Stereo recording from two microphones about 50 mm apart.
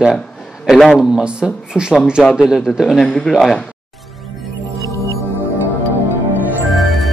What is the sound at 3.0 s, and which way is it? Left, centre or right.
Speech, centre.